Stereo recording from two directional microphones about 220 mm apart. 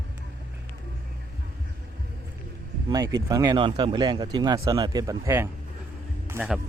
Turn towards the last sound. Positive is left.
turn(degrees=-10)  # may be behind; listen again after turning